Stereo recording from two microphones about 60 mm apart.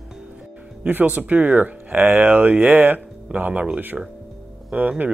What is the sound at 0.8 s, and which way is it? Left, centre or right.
Speech, right.